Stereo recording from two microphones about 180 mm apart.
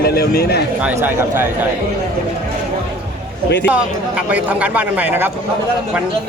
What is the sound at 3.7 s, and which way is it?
Speech, 5° right (ahead or behind).